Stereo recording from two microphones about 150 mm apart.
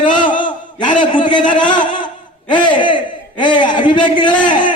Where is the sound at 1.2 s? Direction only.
30° left (ahead or behind).